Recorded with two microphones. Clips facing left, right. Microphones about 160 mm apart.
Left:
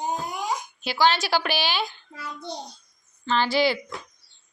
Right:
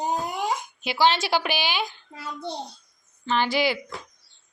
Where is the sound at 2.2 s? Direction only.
25° right (ahead or behind).